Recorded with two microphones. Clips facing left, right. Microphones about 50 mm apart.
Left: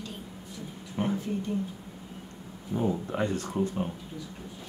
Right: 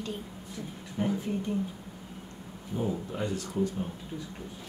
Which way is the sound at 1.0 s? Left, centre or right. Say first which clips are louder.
Even; left.